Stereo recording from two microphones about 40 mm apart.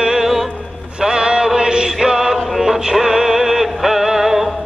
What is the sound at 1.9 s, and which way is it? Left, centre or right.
Music, centre.